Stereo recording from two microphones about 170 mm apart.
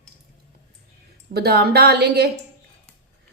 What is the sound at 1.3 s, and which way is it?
Speech, 70° right (ahead or behind).